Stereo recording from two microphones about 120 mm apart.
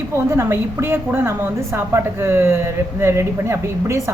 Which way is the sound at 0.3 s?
20° right (ahead or behind).